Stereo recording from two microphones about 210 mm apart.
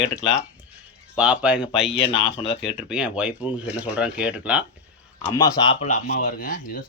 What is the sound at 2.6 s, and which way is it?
Speech, 5° right (ahead or behind).